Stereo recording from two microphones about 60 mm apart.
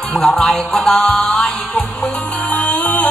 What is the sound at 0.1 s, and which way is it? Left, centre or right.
Music, centre.